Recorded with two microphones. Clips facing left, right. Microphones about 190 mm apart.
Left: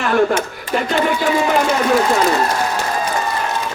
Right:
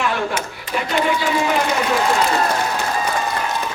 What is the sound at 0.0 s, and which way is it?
Speech, 50° left (ahead or behind).